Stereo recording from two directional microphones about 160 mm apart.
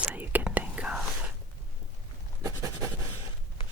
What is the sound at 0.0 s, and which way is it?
Whispering, 10° right (ahead or behind).